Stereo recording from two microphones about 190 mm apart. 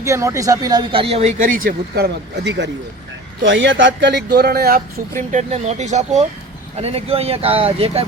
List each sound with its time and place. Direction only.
0.0 s speech: 15° right (ahead or behind); by 8.0 s 30° right (ahead or behind)